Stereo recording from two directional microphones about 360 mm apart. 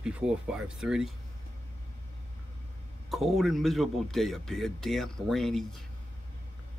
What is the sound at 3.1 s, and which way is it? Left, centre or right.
Speech, centre.